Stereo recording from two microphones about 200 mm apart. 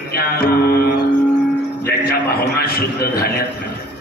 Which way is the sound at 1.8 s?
50° left (ahead or behind).